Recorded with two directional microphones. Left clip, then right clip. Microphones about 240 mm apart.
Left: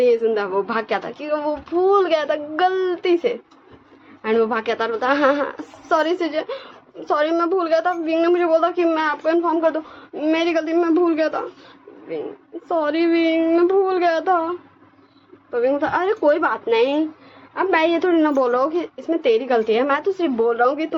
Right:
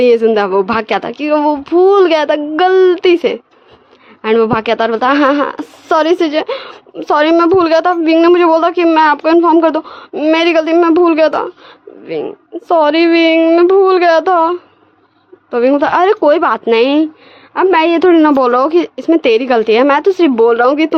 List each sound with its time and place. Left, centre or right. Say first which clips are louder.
0.0 s a woman's voice: right 8 dB; right
12.6 s a woman's voice: right 10 dB; right